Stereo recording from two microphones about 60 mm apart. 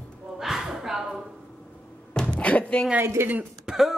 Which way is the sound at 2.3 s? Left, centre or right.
Left.